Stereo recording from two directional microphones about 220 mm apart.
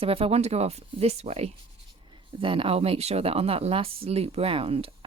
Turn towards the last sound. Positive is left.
turn(degrees=-25)  # may be behind; listen again after turning